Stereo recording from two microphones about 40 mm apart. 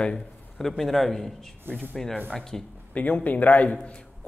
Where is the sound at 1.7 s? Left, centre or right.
Right.